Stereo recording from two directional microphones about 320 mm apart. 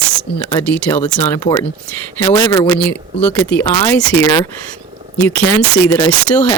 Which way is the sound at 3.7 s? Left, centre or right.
Centre.